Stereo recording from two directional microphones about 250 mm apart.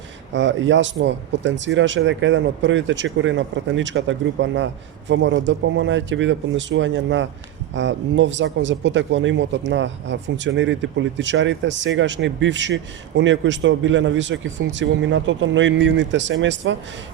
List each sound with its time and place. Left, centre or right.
0.3 s speech: right